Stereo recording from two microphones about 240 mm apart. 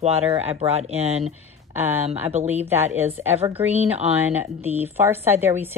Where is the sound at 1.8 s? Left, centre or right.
Centre.